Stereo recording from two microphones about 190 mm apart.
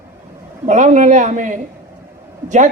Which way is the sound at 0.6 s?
40° right (ahead or behind).